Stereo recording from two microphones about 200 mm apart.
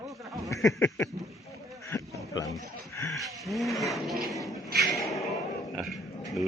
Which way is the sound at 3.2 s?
Centre (ahead or behind).